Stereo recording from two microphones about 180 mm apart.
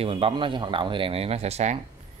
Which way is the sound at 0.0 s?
30° right (ahead or behind).